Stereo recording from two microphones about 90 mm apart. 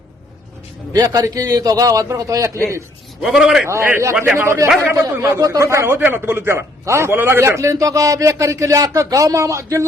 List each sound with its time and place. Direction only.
0.9 s a man's voice: 40° right (ahead or behind)
3.2 s a man's voice: 5° right (ahead or behind)
3.7 s a man's voice: 30° right (ahead or behind)